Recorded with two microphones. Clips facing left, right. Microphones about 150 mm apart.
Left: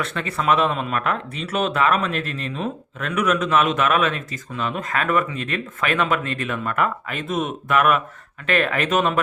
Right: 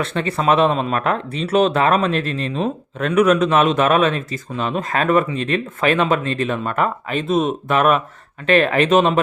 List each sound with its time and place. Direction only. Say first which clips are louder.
0.0 s speech: right 4 dB; 30° right (ahead or behind)